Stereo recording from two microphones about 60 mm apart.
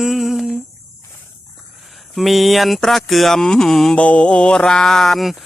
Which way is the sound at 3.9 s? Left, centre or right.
Left.